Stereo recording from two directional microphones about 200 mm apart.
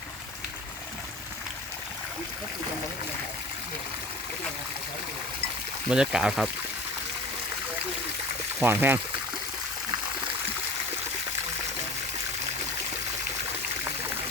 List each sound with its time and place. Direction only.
5.9 s speech: 5° right (ahead or behind)
8.6 s speech: 10° right (ahead or behind)